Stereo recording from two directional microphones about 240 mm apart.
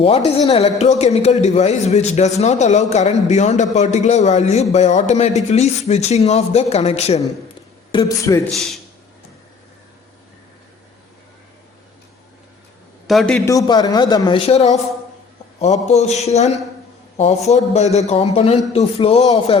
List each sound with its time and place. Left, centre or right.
0.3 s a man's voice: left
7.9 s a man's voice: centre
8.4 s a man's voice: centre
13.1 s a man's voice: centre; by 16.5 s left
17.5 s a man's voice: left